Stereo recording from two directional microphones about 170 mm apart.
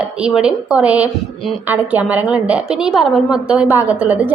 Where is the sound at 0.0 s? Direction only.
5° right (ahead or behind).